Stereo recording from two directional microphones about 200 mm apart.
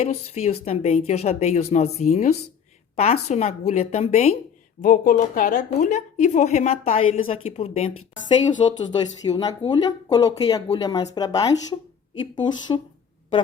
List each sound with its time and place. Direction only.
0.0 s a woman's voice: 30° left (ahead or behind)
9.2 s speech: 20° left (ahead or behind)